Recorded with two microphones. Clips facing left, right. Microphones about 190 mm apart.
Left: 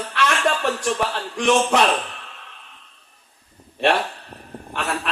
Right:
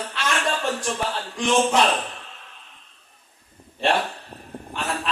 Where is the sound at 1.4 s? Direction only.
60° left (ahead or behind).